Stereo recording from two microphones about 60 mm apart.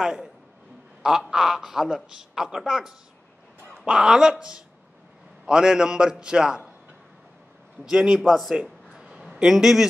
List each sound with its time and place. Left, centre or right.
0.0 s a man's voice: centre
1.3 s a man's voice: centre
7.9 s a man's voice: centre
8.2 s speech: centre
9.0 s a sound: centre